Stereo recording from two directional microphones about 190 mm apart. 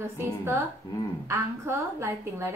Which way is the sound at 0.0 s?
15° right (ahead or behind).